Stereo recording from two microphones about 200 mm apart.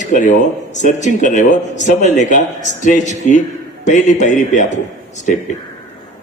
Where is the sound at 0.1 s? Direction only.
40° left (ahead or behind).